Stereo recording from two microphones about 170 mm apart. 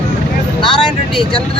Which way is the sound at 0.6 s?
30° left (ahead or behind).